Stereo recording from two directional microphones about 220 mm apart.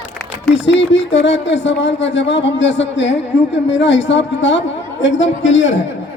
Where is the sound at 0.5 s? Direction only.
55° left (ahead or behind).